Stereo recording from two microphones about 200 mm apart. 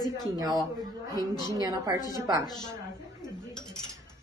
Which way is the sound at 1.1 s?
20° left (ahead or behind).